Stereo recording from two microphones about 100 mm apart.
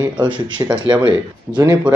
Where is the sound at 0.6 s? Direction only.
35° right (ahead or behind).